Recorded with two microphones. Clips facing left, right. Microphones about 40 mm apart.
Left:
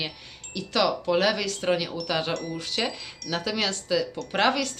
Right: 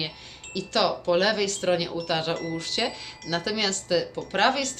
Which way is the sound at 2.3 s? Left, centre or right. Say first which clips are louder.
Right 1 dB; right.